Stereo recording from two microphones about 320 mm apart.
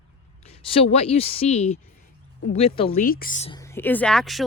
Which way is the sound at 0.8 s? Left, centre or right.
Centre.